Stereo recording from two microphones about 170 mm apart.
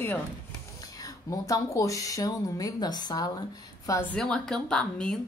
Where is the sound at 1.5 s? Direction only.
20° left (ahead or behind).